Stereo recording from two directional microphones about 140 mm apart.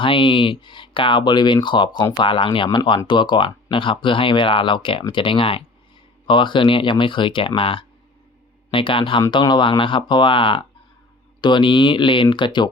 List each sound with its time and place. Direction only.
0.0 s speech: 35° left (ahead or behind)